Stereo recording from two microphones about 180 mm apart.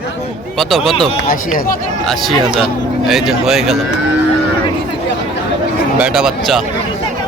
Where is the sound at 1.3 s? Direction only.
50° left (ahead or behind).